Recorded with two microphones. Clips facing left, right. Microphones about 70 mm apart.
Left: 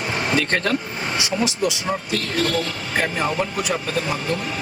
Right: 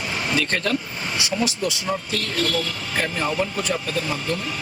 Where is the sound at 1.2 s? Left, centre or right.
Left.